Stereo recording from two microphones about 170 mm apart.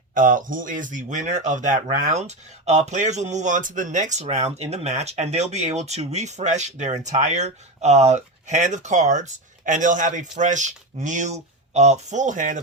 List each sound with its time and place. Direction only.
0.1 s speech: 50° right (ahead or behind)